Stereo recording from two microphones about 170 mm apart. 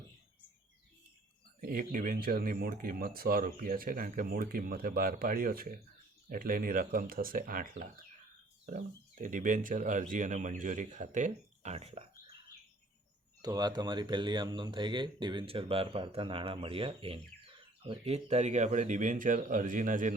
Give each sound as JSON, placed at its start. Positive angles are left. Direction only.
{"t": 1.6, "sound": "speech", "side_deg": -55}
{"t": 9.2, "sound": "speech", "side_deg": -50}
{"t": 13.4, "sound": "speech", "side_deg": -25}